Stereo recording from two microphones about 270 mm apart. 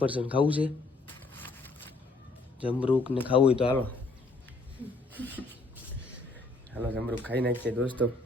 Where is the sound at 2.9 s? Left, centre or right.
Centre.